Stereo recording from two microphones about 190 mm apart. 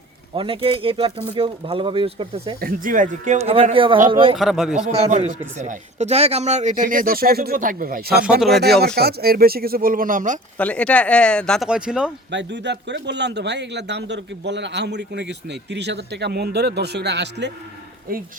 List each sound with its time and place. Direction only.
0.3 s speech: 30° right (ahead or behind)
2.6 s speech: 50° right (ahead or behind); by 4.4 s 25° right (ahead or behind)
4.4 s speech: centre (ahead or behind)
4.9 s speech: 35° right (ahead or behind); by 8.2 s 55° right (ahead or behind)
8.2 s speech: centre (ahead or behind)
9.0 s speech: 55° right (ahead or behind)
10.6 s speech: 5° left (ahead or behind)
12.3 s a man's voice: 70° right (ahead or behind)